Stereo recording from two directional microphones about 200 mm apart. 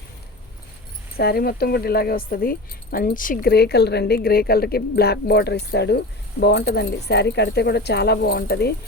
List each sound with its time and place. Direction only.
1.1 s speech: 50° left (ahead or behind)